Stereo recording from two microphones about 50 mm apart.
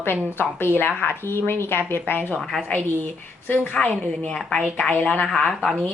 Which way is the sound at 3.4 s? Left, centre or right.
Left.